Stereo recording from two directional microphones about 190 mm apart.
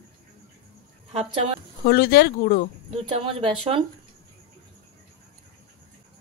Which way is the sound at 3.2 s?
25° right (ahead or behind).